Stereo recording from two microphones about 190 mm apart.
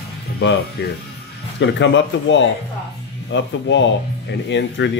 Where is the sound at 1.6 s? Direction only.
75° left (ahead or behind).